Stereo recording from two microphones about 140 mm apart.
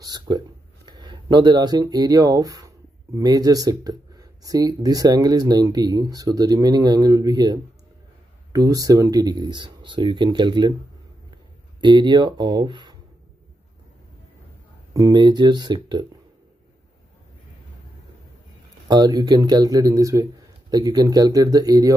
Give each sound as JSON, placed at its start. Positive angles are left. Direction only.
{"t": 0.0, "sound": "speech", "side_deg": -30}
{"t": 11.8, "sound": "speech", "side_deg": -35}
{"t": 15.0, "sound": "speech", "side_deg": -30}
{"t": 18.9, "sound": "speech", "side_deg": -30}